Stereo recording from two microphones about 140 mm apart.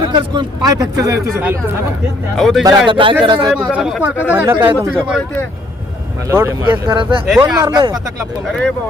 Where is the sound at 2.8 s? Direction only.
35° right (ahead or behind).